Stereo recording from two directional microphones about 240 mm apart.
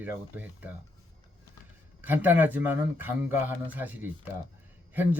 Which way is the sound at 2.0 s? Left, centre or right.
Centre.